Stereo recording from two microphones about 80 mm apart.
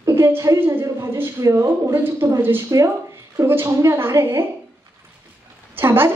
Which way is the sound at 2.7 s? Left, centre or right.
Right.